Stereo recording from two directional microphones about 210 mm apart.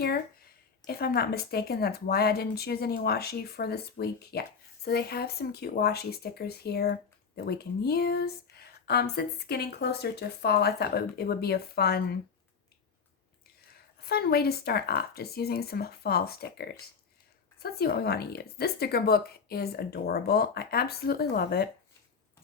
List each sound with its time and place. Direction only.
0.9 s a woman's voice: 50° left (ahead or behind)
14.1 s a woman's voice: 45° left (ahead or behind)